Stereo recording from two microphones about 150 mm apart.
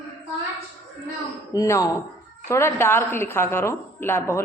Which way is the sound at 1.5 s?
20° left (ahead or behind).